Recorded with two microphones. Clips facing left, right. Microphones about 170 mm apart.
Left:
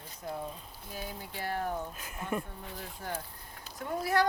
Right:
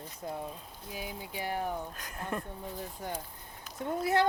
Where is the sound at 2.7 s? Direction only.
20° right (ahead or behind).